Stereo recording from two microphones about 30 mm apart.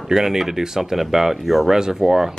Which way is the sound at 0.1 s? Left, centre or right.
Centre.